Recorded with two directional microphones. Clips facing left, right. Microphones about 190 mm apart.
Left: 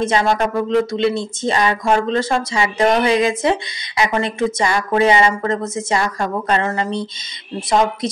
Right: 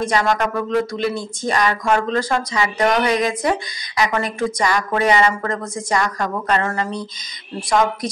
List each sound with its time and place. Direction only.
0.0 s speech: 25° left (ahead or behind)